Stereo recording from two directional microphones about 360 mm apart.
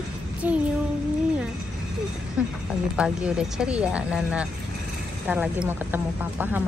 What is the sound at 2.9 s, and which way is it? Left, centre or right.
A child's voice, centre.